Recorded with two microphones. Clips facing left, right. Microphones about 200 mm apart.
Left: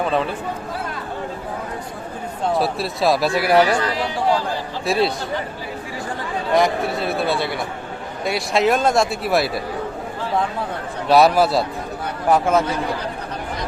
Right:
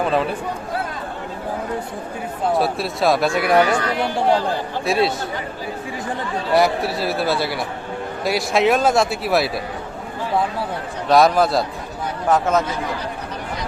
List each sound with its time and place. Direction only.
0.0 s speech: centre (ahead or behind)
2.5 s speech: centre (ahead or behind)
3.9 s speech: 55° right (ahead or behind)
4.9 s speech: centre (ahead or behind)
6.5 s speech: 5° right (ahead or behind)
11.1 s speech: 5° left (ahead or behind)